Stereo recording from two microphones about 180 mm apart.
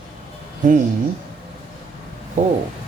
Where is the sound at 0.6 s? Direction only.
50° right (ahead or behind).